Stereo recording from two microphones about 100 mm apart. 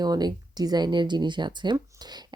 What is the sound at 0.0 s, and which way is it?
Speech, 40° right (ahead or behind).